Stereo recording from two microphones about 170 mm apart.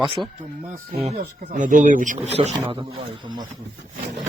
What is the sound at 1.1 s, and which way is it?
Speech, 50° right (ahead or behind).